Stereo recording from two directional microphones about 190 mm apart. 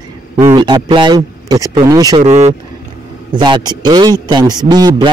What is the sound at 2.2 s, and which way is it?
Speech, 35° right (ahead or behind).